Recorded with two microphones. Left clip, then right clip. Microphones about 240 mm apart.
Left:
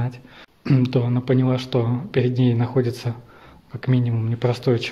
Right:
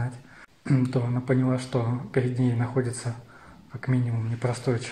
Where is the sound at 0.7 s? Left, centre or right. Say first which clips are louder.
Left 6 dB; left.